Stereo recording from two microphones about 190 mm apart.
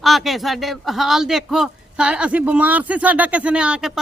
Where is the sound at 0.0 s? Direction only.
Centre (ahead or behind).